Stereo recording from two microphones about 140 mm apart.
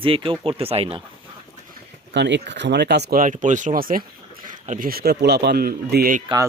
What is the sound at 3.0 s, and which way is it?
A man's voice, 75° right (ahead or behind).